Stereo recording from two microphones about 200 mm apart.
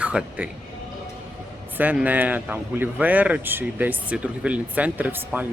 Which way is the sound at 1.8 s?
10° right (ahead or behind).